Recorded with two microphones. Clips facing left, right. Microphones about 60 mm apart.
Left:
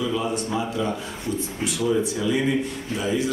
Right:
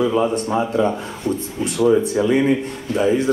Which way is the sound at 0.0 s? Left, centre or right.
Right.